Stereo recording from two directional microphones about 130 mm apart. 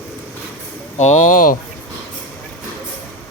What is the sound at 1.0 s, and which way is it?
Speech, 65° left (ahead or behind).